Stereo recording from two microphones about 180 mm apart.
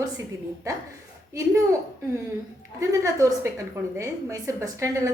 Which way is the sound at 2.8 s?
15° right (ahead or behind).